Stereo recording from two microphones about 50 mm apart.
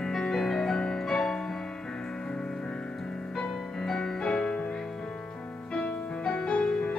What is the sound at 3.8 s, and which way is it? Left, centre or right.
Music, centre.